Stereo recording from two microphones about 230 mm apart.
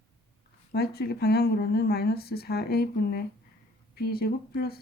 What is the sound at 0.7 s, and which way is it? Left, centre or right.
Speech, left.